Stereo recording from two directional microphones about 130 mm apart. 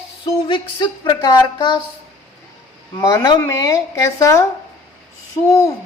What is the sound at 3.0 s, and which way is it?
Speech, 25° left (ahead or behind).